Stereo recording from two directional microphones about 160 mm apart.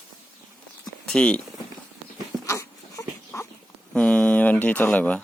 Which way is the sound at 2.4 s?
20° left (ahead or behind).